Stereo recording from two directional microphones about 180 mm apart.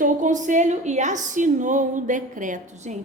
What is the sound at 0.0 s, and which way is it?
Speech, 45° right (ahead or behind).